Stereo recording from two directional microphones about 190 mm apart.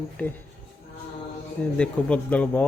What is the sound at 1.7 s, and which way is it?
Speech, 5° left (ahead or behind).